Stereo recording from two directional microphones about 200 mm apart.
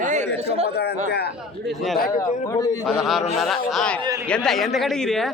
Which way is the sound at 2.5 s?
15° left (ahead or behind).